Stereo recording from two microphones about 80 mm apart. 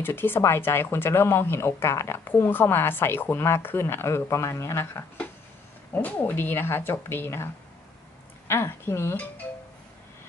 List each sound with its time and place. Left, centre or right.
0.0 s speech: left
5.9 s speech: left
8.5 s speech: left